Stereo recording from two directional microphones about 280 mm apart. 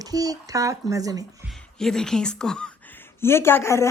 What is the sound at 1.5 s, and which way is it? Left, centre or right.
A woman's voice, centre.